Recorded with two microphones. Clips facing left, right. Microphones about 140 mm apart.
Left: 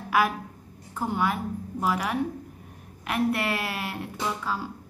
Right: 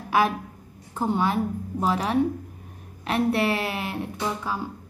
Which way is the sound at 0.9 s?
25° right (ahead or behind).